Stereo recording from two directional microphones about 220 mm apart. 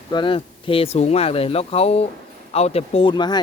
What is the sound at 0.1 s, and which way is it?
Speech, 20° left (ahead or behind).